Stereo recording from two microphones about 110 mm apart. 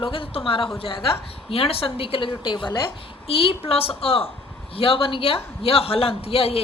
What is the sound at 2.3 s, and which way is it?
Speech, 45° left (ahead or behind).